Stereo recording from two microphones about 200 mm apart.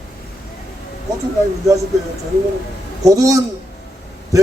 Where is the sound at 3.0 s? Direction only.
15° right (ahead or behind).